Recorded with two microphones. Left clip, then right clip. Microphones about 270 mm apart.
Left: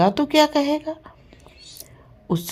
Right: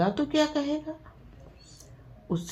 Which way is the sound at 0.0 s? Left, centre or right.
Left.